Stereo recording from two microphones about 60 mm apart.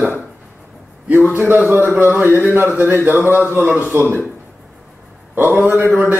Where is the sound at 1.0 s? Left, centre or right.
Right.